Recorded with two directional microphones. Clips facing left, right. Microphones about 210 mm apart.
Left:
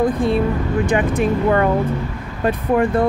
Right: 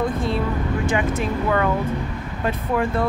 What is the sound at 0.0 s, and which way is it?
Speech, 55° left (ahead or behind).